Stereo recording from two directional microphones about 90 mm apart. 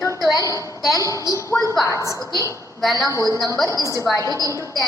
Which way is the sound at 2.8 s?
Centre (ahead or behind).